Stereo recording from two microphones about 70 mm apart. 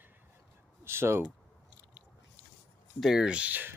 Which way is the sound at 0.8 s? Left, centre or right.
Right.